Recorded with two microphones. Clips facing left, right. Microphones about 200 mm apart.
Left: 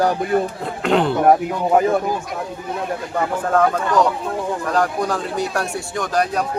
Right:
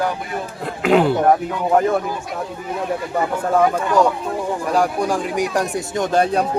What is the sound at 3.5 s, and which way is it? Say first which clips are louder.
Speech: right 1 dB; 10° right (ahead or behind).